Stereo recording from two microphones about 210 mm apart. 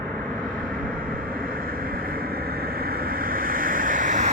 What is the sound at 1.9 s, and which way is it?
Vehicle, 45° right (ahead or behind).